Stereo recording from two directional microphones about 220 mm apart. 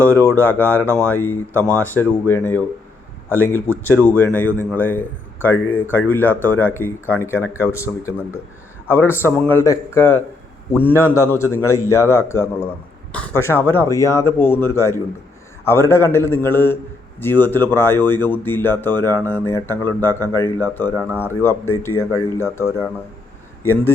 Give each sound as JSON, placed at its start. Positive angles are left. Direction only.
{"t": 0.0, "sound": "speech", "side_deg": 10}
{"t": 4.0, "sound": "speech", "side_deg": 10}